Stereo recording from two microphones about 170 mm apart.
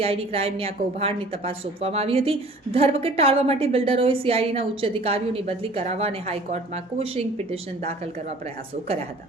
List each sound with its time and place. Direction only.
0.0 s a woman's voice: 35° right (ahead or behind)